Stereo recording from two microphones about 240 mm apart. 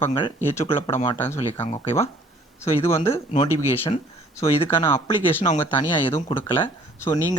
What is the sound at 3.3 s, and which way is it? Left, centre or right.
Speech, left.